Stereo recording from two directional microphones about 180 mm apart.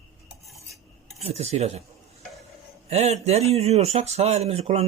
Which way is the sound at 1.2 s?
35° right (ahead or behind).